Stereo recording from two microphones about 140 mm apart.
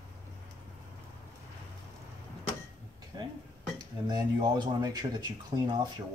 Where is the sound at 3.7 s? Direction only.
30° right (ahead or behind).